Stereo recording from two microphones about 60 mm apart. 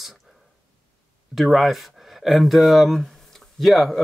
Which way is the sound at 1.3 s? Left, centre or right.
Centre.